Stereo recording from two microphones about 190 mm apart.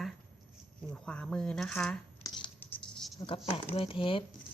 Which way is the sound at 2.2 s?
25° left (ahead or behind).